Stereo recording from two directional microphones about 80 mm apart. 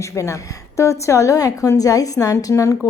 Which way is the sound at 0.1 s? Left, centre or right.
Left.